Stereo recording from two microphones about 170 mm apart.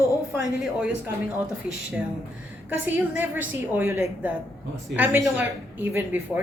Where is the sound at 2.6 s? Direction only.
10° right (ahead or behind).